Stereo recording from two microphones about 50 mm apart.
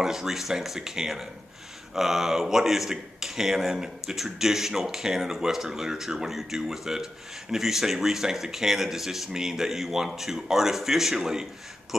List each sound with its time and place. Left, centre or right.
0.0 s a man's voice: centre